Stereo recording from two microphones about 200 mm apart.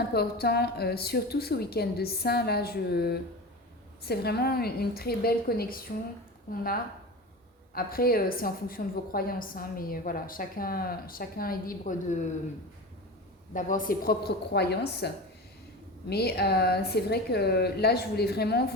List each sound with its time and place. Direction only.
0.1 s a woman's voice: 50° left (ahead or behind)
7.7 s a woman's voice: 50° left (ahead or behind)
13.5 s a woman's voice: 40° left (ahead or behind)